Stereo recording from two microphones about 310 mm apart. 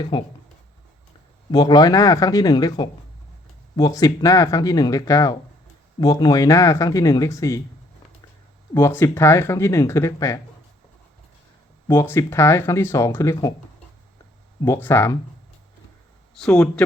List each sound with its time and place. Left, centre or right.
0.1 s speech: centre
1.5 s speech: centre
8.7 s speech: centre
11.9 s speech: centre
14.6 s speech: centre
16.4 s speech: centre